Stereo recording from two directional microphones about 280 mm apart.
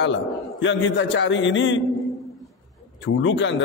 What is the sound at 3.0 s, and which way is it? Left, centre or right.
Speech, left.